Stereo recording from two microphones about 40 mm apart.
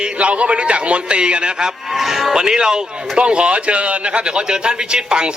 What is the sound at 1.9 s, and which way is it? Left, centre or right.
Speech, centre.